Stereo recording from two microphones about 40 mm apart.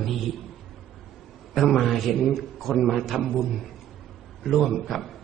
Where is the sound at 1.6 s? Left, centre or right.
Centre.